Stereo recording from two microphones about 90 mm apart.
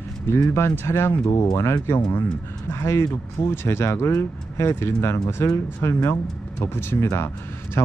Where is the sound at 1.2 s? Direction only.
45° left (ahead or behind).